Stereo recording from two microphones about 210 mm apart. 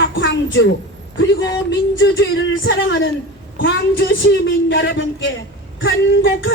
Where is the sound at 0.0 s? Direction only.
60° left (ahead or behind).